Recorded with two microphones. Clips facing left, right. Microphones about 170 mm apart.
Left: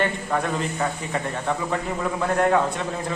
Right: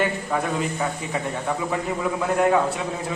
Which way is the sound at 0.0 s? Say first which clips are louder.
Even; 10° right (ahead or behind).